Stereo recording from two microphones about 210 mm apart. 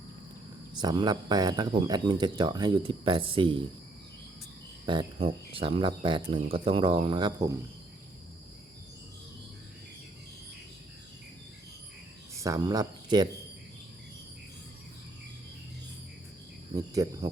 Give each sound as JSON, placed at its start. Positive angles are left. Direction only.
{"t": 0.8, "sound": "speech", "side_deg": -20}
{"t": 4.9, "sound": "speech", "side_deg": -25}
{"t": 12.4, "sound": "speech", "side_deg": -15}
{"t": 16.7, "sound": "cricket", "side_deg": -15}